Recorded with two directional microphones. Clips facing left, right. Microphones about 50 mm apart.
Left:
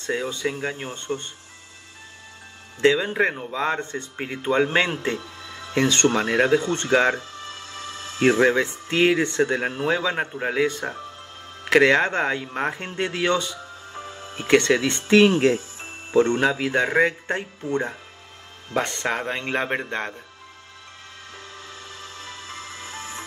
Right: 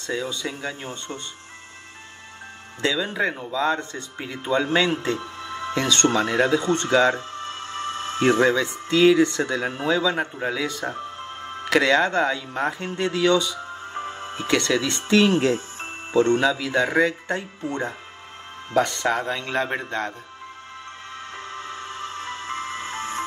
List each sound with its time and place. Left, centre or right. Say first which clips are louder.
0.0 s speech: left 2 dB; left
2.8 s speech: left 4 dB; left
5.4 s music: right 7 dB; right
5.8 s speech: left 1 dB; left
7.2 s music: right 4 dB; right
8.2 s speech: left 1 dB; left
13.9 s music: right 4 dB; right
14.5 s speech: left 4 dB; left
18.7 s speech: right 3 dB; left
21.4 s music: right 7 dB; right